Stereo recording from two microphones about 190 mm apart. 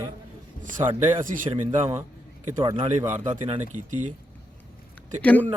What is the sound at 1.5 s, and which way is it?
Speech, 20° right (ahead or behind).